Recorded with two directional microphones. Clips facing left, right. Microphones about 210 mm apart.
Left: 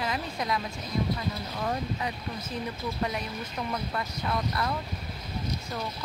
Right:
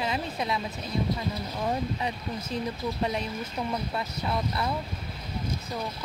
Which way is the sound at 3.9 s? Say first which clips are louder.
Right 1 dB; 20° right (ahead or behind).